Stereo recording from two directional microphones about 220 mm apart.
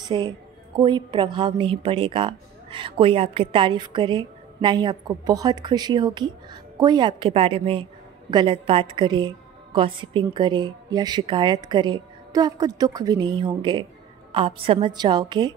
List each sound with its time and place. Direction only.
0.0 s a woman's voice: 20° right (ahead or behind)